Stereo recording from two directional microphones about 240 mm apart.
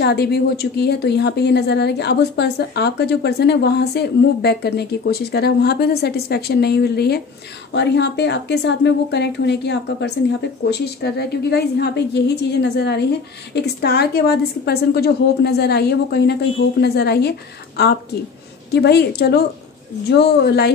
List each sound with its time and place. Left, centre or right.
0.0 s speech: left